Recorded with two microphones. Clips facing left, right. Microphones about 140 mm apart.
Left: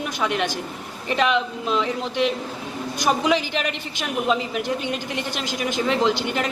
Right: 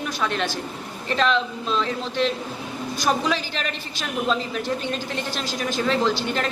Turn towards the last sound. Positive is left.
turn(degrees=15)  # may be behind; listen again after turning